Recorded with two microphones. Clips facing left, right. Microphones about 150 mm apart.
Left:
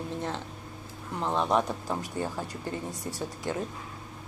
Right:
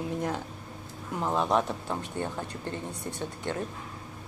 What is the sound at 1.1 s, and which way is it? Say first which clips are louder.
Speech: even; 5° right (ahead or behind).